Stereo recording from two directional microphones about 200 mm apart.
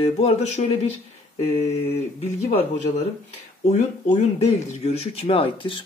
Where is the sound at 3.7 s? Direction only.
35° left (ahead or behind).